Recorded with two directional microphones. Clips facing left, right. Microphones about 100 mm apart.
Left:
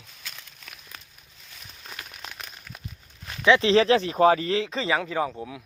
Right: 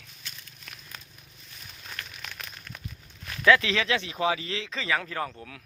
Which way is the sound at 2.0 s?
15° left (ahead or behind).